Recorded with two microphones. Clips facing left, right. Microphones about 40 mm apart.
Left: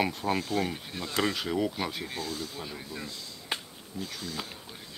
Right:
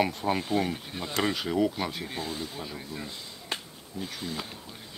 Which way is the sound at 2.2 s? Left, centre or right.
Right.